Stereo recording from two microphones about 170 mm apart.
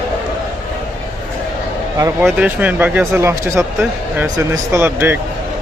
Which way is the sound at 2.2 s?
5° right (ahead or behind).